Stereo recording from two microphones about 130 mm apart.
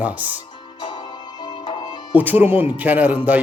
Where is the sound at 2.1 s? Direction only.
15° right (ahead or behind).